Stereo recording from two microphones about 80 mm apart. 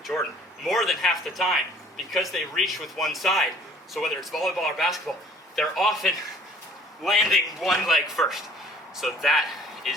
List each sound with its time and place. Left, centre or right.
0.1 s speech: left
0.6 s a man's voice: centre